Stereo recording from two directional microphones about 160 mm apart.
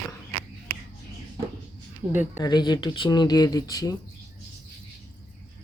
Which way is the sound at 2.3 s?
25° left (ahead or behind).